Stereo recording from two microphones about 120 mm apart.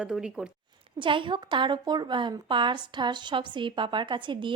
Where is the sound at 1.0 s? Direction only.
45° right (ahead or behind).